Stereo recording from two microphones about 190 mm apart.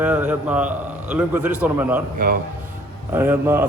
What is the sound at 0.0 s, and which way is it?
A man's voice, 10° right (ahead or behind).